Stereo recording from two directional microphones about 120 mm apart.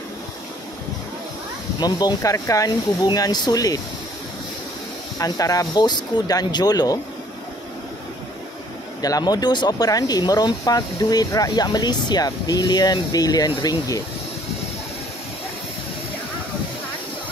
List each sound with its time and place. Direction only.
1.8 s speech: 35° left (ahead or behind)
5.2 s speech: 30° left (ahead or behind)
9.0 s speech: 30° left (ahead or behind)